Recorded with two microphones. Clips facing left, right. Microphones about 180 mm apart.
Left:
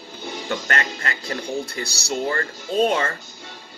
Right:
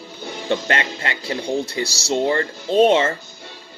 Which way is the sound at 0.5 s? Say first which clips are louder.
Right 5 dB; 25° right (ahead or behind).